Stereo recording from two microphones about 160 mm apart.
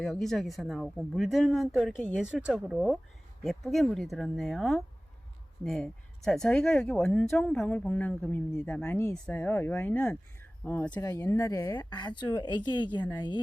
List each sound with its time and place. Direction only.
0.0 s speech: centre (ahead or behind); by 13.4 s 25° left (ahead or behind)